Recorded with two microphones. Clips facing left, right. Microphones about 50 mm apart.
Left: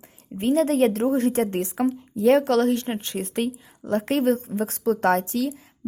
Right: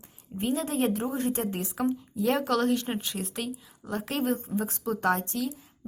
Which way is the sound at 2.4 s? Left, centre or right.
Left.